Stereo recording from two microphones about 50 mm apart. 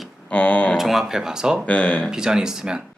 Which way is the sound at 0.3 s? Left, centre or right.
Left.